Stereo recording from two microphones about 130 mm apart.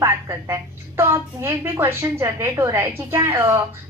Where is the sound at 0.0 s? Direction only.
20° right (ahead or behind).